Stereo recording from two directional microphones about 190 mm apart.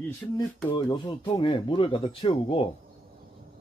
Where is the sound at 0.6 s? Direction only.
25° left (ahead or behind).